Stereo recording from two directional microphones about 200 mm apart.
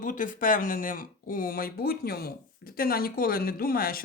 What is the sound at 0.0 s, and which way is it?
Speech, 40° left (ahead or behind).